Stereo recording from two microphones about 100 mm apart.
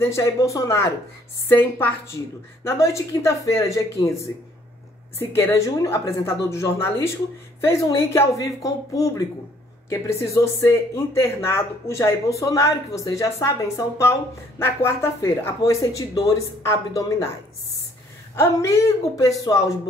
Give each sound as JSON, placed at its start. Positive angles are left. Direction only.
{"t": 0.0, "sound": "speech", "side_deg": 30}
{"t": 1.5, "sound": "speech", "side_deg": 20}
{"t": 5.3, "sound": "speech", "side_deg": 30}
{"t": 18.3, "sound": "speech", "side_deg": 25}